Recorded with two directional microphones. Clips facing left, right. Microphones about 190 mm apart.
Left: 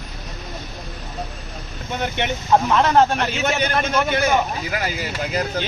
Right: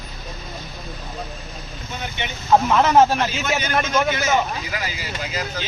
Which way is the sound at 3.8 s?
60° left (ahead or behind).